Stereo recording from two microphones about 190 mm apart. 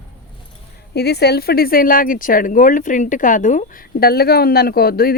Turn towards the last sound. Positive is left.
turn(degrees=55)  # may be behind; listen again after turning